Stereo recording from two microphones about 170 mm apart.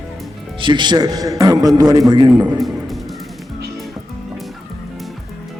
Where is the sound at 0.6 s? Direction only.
25° right (ahead or behind).